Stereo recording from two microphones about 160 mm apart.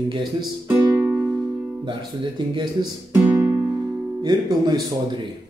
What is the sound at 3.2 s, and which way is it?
Music, 15° right (ahead or behind).